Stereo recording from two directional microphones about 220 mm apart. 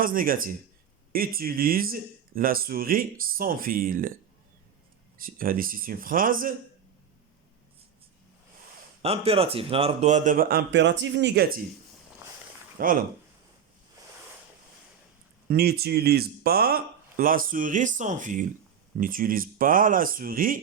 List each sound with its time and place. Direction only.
0.0 s speech: 40° right (ahead or behind)
5.1 s speech: 40° right (ahead or behind)
9.0 s speech: 25° right (ahead or behind); by 11.6 s 45° right (ahead or behind)
12.8 s speech: 40° right (ahead or behind)
14.0 s a sound: 15° right (ahead or behind)
15.4 s speech: 45° right (ahead or behind)